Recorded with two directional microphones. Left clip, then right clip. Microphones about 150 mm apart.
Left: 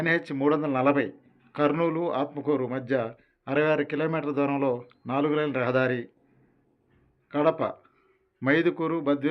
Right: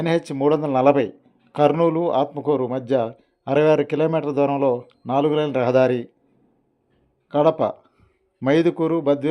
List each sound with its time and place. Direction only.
0.0 s a man's voice: 45° right (ahead or behind)
7.3 s a man's voice: 45° right (ahead or behind)